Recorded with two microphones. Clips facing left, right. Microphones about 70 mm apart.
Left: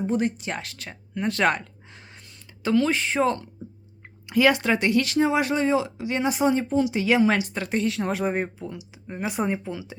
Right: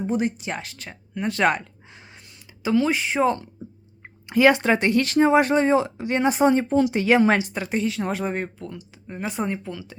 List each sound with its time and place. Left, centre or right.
0.0 s speech: centre
4.0 s speech: right
7.5 s speech: centre